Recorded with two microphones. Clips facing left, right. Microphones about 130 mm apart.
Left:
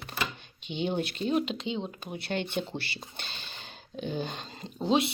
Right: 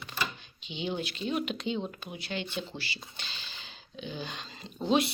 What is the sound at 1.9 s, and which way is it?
Speech, 40° left (ahead or behind).